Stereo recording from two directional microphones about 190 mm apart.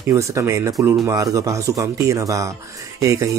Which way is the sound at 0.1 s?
15° right (ahead or behind).